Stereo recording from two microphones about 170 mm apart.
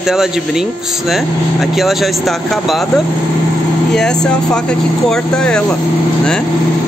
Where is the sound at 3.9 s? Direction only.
5° left (ahead or behind).